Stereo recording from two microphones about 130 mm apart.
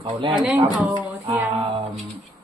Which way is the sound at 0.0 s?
40° right (ahead or behind).